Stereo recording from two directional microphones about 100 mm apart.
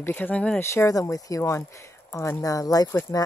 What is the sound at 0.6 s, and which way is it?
Speech, 25° left (ahead or behind).